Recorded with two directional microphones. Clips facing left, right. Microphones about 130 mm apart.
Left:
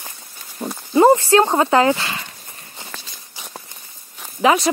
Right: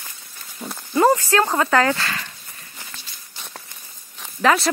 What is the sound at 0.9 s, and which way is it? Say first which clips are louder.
Speech: left 4 dB; 25° left (ahead or behind).